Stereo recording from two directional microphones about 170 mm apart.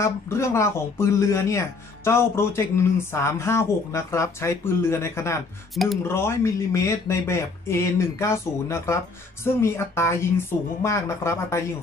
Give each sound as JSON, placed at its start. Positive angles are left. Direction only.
{"t": 0.0, "sound": "speech", "side_deg": 15}